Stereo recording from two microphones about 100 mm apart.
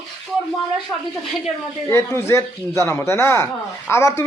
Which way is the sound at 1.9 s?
25° left (ahead or behind).